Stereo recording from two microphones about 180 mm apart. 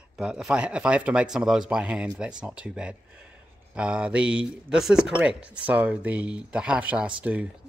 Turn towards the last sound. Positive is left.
turn(degrees=-10)  # may be behind; listen again after turning